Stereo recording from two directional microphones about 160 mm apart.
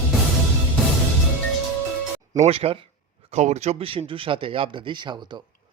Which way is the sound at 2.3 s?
40° right (ahead or behind).